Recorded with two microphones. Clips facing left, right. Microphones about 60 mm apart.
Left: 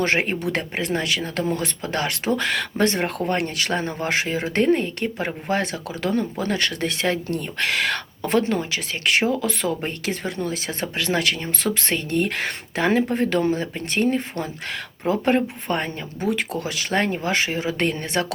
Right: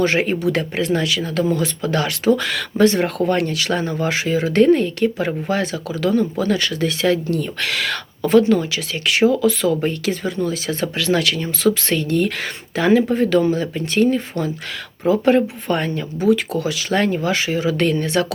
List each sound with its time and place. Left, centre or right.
0.0 s speech: left
16.6 s speech: left